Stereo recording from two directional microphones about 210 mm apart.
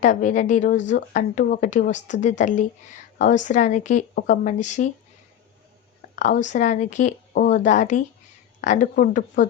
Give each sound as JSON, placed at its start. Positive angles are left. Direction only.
{"t": 0.0, "sound": "speech", "side_deg": 35}
{"t": 6.1, "sound": "speech", "side_deg": 35}